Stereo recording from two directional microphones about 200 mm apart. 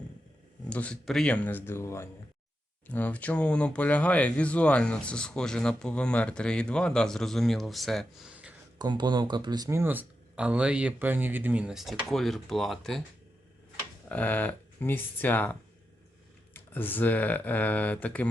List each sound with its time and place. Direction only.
0.7 s speech: 5° left (ahead or behind)
8.8 s speech: 20° right (ahead or behind); by 13.0 s centre (ahead or behind)
14.1 s speech: 10° left (ahead or behind)
16.6 s speech: 10° left (ahead or behind)